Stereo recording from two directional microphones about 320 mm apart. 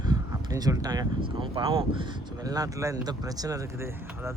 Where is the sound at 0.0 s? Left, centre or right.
Centre.